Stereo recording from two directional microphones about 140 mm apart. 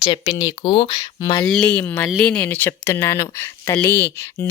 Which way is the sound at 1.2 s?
25° left (ahead or behind).